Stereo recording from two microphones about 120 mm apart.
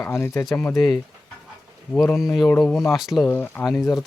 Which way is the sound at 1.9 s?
10° left (ahead or behind).